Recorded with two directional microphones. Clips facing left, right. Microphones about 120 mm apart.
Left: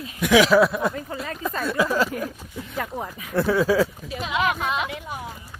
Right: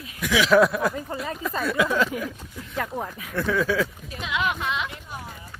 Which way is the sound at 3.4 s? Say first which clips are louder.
Left 4 dB; 35° left (ahead or behind).